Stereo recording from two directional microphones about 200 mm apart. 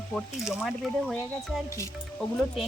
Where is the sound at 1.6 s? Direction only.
15° left (ahead or behind).